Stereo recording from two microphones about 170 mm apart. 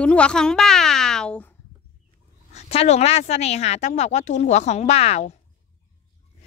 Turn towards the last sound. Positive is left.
turn(degrees=40)  # may be behind; listen again after turning